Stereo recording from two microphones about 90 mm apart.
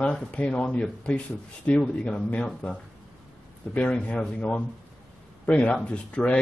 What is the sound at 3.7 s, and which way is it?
Speech, 15° left (ahead or behind).